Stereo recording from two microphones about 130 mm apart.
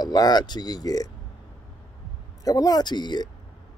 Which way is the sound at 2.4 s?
25° left (ahead or behind).